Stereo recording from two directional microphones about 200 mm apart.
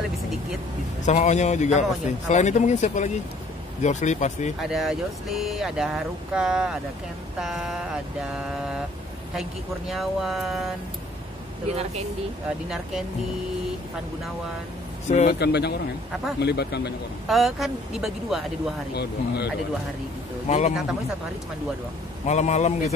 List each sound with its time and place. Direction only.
1.0 s a man's voice: 35° left (ahead or behind)
4.6 s speech: centre (ahead or behind)
9.3 s speech: centre (ahead or behind)
11.7 s speech: 30° right (ahead or behind)
12.6 s speech: centre (ahead or behind)
15.2 s speech: 55° left (ahead or behind)
17.3 s speech: centre (ahead or behind)
18.9 s speech: 55° left (ahead or behind)
20.4 s a man's voice: 35° left (ahead or behind)
22.2 s a man's voice: 35° left (ahead or behind)